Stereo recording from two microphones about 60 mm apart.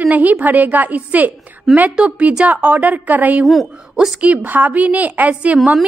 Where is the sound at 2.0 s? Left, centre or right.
Centre.